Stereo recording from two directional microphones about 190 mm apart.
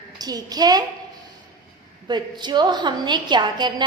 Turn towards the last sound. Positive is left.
turn(degrees=-25)  # may be behind; listen again after turning